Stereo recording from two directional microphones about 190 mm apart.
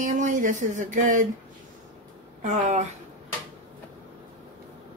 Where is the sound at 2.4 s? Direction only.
35° right (ahead or behind).